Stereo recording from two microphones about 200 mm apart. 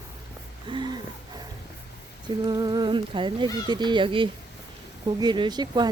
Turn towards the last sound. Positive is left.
turn(degrees=-20)  # may be behind; listen again after turning